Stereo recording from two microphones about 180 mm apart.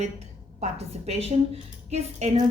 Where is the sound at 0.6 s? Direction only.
35° right (ahead or behind).